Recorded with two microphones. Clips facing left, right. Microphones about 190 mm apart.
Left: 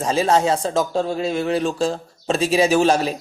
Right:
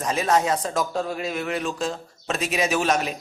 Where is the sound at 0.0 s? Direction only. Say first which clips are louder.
Left 4 dB; 30° left (ahead or behind).